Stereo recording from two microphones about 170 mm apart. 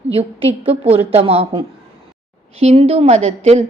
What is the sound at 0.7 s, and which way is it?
A woman's voice, 35° right (ahead or behind).